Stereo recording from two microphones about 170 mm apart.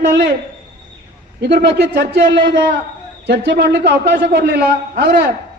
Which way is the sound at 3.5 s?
90° right.